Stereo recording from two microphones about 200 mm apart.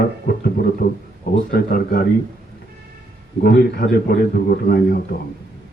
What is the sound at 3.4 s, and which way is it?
A man's voice, 50° left (ahead or behind).